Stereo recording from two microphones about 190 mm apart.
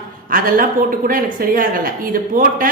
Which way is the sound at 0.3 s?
45° right (ahead or behind).